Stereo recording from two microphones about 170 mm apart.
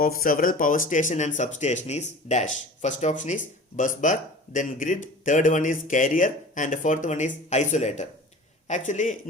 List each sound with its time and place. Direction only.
0.0 s speech: 55° left (ahead or behind)